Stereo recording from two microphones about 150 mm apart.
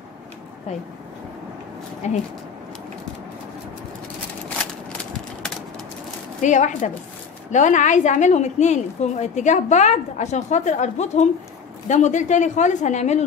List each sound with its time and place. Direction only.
2.0 s a woman's voice: 50° left (ahead or behind)
6.4 s a woman's voice: 55° left (ahead or behind)